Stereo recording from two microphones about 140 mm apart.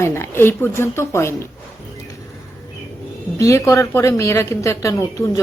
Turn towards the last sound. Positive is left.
turn(degrees=25)  # may be behind; listen again after turning